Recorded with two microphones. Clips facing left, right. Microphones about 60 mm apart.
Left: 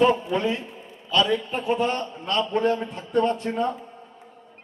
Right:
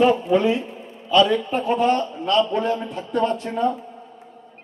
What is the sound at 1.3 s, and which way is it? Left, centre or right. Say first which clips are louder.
A man's voice: right 3 dB; centre.